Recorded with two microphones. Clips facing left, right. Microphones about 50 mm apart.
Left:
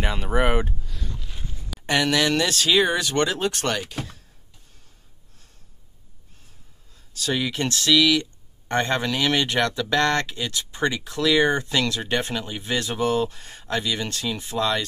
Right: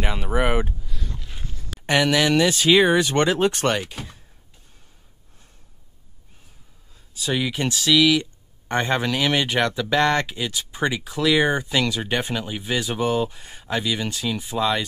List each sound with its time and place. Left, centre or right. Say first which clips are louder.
0.0 s a sound: even; centre
1.9 s speech: right 2 dB; centre
3.8 s speech: left 2 dB; centre
7.2 s speech: right 1 dB; centre